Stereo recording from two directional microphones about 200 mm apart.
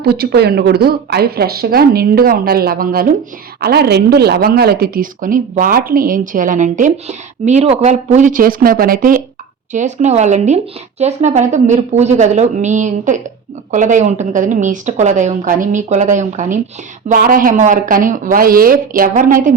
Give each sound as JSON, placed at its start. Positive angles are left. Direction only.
{"t": 0.0, "sound": "a woman's voice", "side_deg": -50}